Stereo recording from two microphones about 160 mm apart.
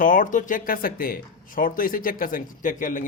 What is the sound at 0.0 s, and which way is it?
Speech, 55° left (ahead or behind).